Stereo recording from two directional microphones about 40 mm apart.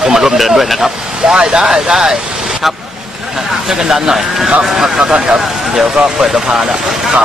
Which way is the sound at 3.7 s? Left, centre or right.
Centre.